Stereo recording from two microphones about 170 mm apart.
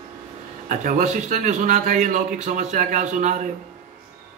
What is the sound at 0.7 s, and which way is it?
Speech, 50° right (ahead or behind).